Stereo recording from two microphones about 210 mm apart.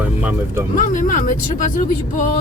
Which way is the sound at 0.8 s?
40° left (ahead or behind).